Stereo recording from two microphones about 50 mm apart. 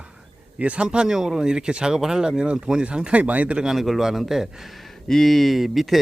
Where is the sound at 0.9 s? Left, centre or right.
Centre; by 3.6 s right.